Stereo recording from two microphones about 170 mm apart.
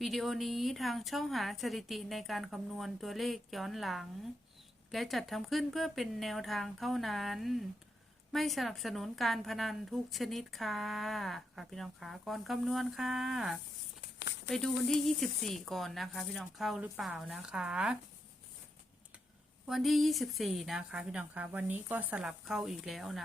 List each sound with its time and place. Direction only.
0.0 s a woman's voice: centre (ahead or behind)
14.0 s a sound: 90° left
14.8 s a woman's voice: centre (ahead or behind)
19.6 s a woman's voice: centre (ahead or behind)